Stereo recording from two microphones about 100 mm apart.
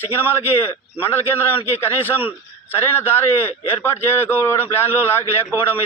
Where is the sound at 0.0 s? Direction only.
25° left (ahead or behind).